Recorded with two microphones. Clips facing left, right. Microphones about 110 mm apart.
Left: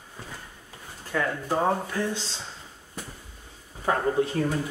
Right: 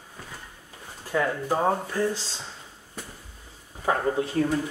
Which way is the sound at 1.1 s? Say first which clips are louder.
Right 2 dB; 15° right (ahead or behind).